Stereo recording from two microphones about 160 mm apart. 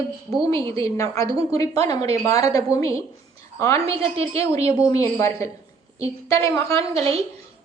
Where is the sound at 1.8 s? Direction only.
40° right (ahead or behind).